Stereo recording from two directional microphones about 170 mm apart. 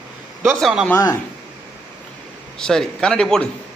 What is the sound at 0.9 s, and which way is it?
Speech, 15° left (ahead or behind).